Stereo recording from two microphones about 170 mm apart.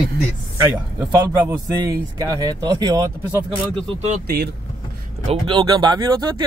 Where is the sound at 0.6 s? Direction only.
25° right (ahead or behind).